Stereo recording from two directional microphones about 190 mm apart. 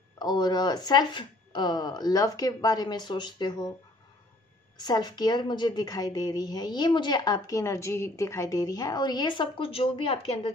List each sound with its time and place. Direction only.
0.2 s a woman's voice: 20° left (ahead or behind)
4.7 s a woman's voice: 20° left (ahead or behind)